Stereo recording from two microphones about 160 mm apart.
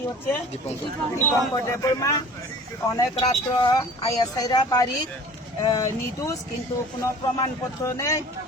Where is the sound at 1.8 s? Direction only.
20° left (ahead or behind).